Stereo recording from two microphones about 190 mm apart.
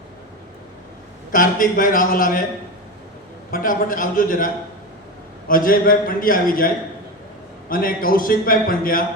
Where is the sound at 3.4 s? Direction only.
45° left (ahead or behind).